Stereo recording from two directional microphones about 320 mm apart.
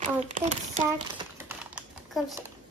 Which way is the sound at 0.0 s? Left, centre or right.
Right.